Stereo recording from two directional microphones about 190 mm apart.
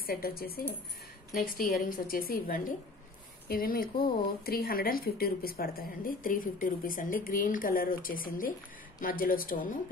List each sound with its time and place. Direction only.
0.0 s speech: 50° left (ahead or behind)